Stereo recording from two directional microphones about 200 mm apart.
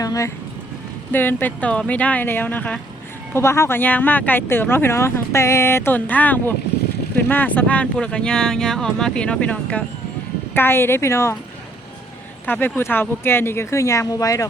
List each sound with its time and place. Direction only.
0.0 s a sound: 15° left (ahead or behind)
1.1 s speech: 10° left (ahead or behind)
12.5 s speech: 10° left (ahead or behind)